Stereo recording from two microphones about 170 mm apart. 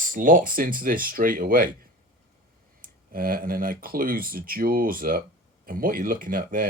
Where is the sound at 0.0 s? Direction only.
50° right (ahead or behind).